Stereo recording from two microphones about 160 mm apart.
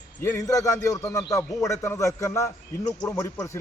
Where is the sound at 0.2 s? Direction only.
15° left (ahead or behind).